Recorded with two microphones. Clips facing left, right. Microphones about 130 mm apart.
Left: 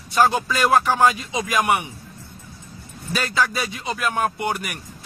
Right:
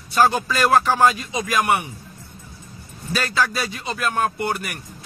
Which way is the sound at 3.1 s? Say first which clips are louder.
Even; 20° left (ahead or behind).